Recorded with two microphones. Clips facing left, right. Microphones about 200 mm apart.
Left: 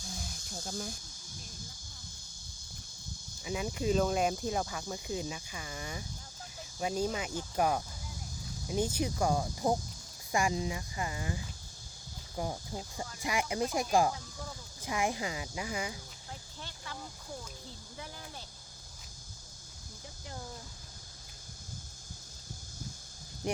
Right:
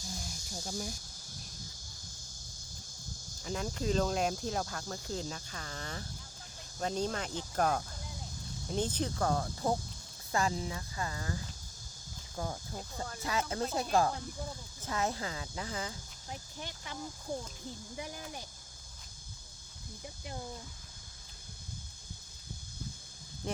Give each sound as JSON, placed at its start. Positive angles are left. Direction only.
{"t": 0.0, "sound": "a sound", "side_deg": 0}
{"t": 3.4, "sound": "speech", "side_deg": 5}
{"t": 12.4, "sound": "speech", "side_deg": 15}
{"t": 16.3, "sound": "speech", "side_deg": -15}